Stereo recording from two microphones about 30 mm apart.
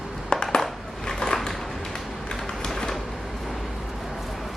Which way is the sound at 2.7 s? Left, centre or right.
Centre.